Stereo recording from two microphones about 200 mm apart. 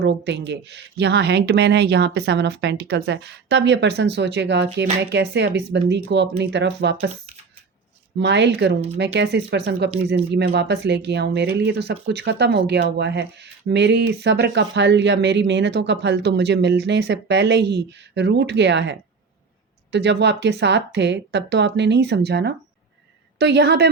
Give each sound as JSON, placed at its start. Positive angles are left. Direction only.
{"t": 0.0, "sound": "speech", "side_deg": -60}
{"t": 8.2, "sound": "speech", "side_deg": -60}